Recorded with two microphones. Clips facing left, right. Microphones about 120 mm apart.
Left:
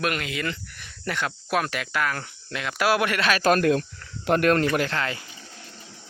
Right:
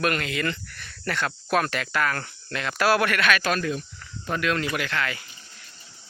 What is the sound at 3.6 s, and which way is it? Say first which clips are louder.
Speech: left 7 dB; 80° left.